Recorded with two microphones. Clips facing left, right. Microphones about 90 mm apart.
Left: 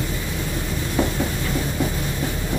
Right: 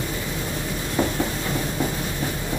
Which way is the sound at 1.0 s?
20° right (ahead or behind).